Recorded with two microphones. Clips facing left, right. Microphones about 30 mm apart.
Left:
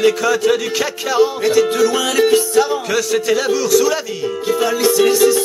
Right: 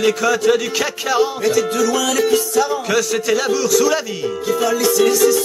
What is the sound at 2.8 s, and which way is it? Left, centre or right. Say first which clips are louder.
A man's voice: left 1 dB; centre.